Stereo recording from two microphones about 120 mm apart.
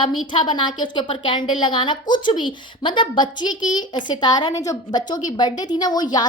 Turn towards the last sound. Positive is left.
turn(degrees=35)  # may be behind; listen again after turning